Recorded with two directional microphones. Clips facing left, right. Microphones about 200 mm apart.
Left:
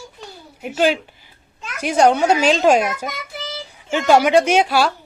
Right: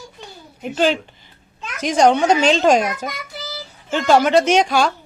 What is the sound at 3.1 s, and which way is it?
Child singing, 25° left (ahead or behind).